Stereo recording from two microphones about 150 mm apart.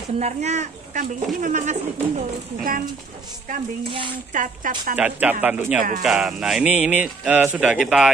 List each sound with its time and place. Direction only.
0.2 s speech: 50° right (ahead or behind)
3.8 s speech: 35° right (ahead or behind)
4.3 s speech: 60° right (ahead or behind)
4.9 s speech: 10° right (ahead or behind)
5.8 s speech: 65° right (ahead or behind)
6.0 s speech: centre (ahead or behind)